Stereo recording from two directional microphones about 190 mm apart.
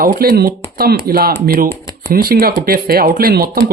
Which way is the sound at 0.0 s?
50° right (ahead or behind).